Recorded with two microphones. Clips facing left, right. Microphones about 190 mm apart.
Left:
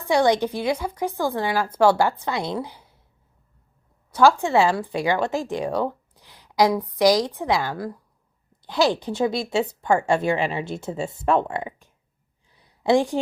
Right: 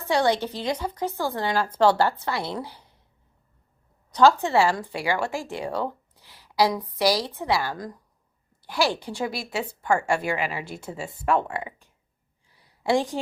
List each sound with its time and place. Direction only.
0.0 s a woman's voice: 15° left (ahead or behind)
4.1 s a woman's voice: 10° left (ahead or behind)
12.5 s a sound: 20° left (ahead or behind)